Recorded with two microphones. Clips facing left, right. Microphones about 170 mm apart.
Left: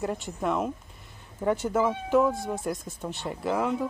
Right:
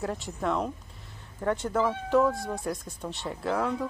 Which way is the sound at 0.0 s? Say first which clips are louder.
Left 1 dB; centre (ahead or behind).